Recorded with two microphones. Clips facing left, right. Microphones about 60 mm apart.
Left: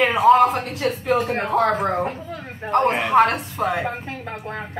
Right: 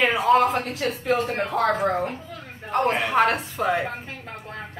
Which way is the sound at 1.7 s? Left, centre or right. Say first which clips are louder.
Left 2 dB; centre.